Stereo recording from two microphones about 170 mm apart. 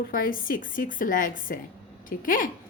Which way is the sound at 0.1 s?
55° left (ahead or behind).